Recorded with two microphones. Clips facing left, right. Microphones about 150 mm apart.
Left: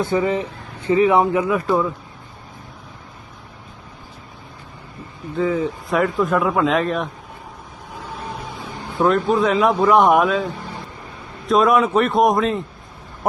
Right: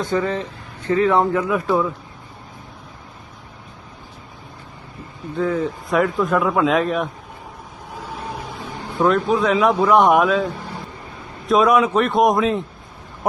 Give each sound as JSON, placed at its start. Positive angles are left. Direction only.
{"t": 0.0, "sound": "speech", "side_deg": 10}
{"t": 1.5, "sound": "a man's voice", "side_deg": 0}
{"t": 5.4, "sound": "a man's voice", "side_deg": 0}
{"t": 9.0, "sound": "a man's voice", "side_deg": 0}